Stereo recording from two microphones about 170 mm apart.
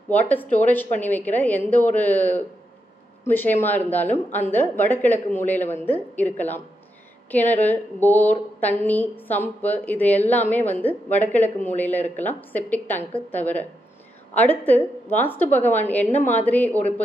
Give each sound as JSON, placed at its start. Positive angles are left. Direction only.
{"t": 0.1, "sound": "speech", "side_deg": 10}